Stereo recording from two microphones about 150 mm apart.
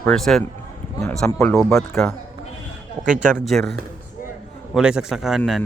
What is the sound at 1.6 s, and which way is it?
Speech, centre (ahead or behind).